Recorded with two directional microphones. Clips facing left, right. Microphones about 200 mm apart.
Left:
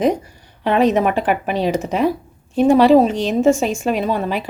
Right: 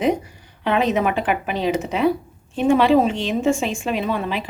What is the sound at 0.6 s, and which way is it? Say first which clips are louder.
A woman's voice: left 4 dB; 40° left (ahead or behind).